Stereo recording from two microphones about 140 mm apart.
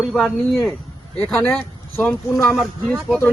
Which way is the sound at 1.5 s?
10° left (ahead or behind).